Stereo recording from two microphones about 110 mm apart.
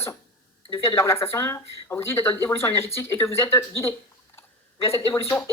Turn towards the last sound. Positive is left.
turn(degrees=25)  # may be behind; listen again after turning